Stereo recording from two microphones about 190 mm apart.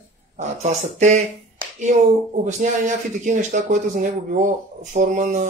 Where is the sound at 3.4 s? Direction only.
40° right (ahead or behind).